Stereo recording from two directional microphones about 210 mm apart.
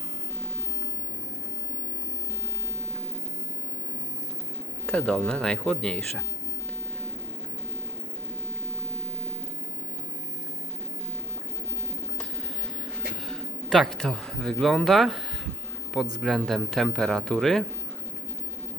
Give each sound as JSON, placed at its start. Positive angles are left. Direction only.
{"t": 4.9, "sound": "speech", "side_deg": 5}
{"t": 13.7, "sound": "speech", "side_deg": 0}
{"t": 16.2, "sound": "speech", "side_deg": 0}